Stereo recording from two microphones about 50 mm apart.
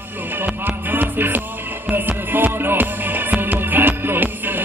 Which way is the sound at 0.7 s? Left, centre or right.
Right.